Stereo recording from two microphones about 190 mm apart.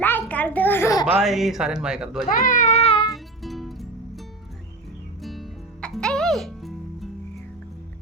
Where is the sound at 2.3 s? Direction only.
45° left (ahead or behind).